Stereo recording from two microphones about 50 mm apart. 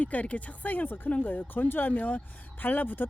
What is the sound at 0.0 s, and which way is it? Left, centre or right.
Speech, left.